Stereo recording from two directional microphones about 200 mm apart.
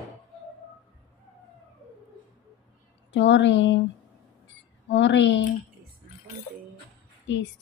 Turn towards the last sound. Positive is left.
turn(degrees=65)  # may be behind; listen again after turning